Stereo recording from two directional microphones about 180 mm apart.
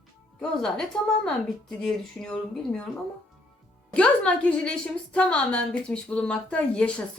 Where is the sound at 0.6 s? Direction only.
5° left (ahead or behind).